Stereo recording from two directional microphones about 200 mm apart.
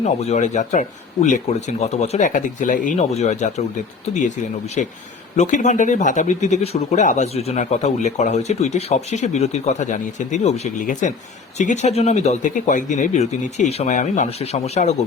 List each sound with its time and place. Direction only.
0.0 s speech: 35° left (ahead or behind)
5.4 s speech: 35° left (ahead or behind)